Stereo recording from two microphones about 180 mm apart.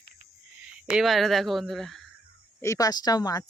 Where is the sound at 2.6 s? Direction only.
20° left (ahead or behind).